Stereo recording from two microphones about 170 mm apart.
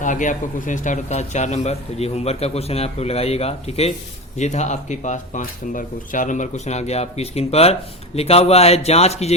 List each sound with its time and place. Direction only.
0.0 s speech: 50° left (ahead or behind)